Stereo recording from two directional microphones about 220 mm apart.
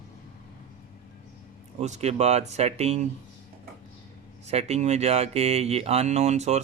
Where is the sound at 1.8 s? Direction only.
30° right (ahead or behind).